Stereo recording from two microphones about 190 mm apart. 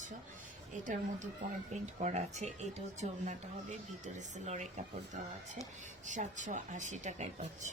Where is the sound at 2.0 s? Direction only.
35° right (ahead or behind).